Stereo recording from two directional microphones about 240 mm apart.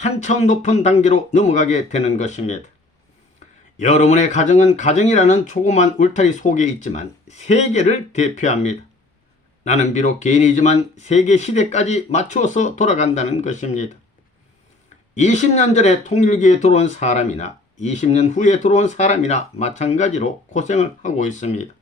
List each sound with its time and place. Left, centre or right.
0.0 s speech: left
3.8 s speech: left
15.1 s speech: left